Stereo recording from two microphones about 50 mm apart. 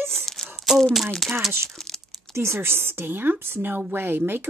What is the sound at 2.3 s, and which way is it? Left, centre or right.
A woman's voice, right.